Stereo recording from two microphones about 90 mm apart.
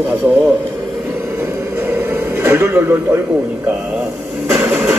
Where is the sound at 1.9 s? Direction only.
25° right (ahead or behind).